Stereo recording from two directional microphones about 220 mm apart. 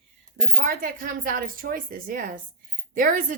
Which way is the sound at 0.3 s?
40° right (ahead or behind).